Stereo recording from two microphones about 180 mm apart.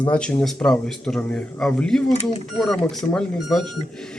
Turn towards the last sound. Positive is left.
turn(degrees=0)  # may be behind; listen again after turning